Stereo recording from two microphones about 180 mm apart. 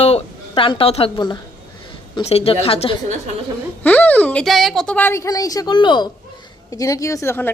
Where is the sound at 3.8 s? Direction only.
10° left (ahead or behind).